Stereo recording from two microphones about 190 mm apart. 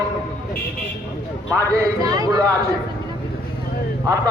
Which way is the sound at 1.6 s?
15° right (ahead or behind).